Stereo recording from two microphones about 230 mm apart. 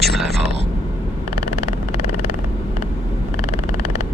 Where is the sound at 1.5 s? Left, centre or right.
Left.